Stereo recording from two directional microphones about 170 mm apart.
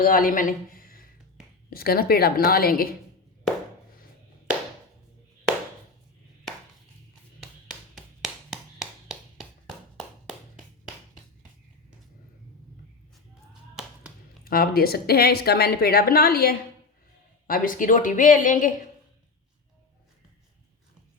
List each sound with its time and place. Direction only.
0.0 s a woman's voice: 55° left (ahead or behind)
7.4 s a sound: 5° right (ahead or behind)
13.5 s tap: centre (ahead or behind)
14.4 s a woman's voice: 60° left (ahead or behind)